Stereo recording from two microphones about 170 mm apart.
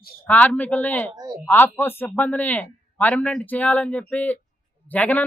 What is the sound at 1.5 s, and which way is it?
A man's voice, 10° left (ahead or behind).